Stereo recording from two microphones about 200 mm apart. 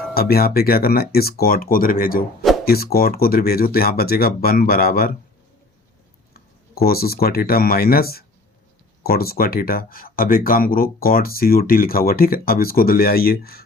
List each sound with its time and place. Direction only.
0.1 s speech: 50° left (ahead or behind)
6.7 s speech: 50° left (ahead or behind)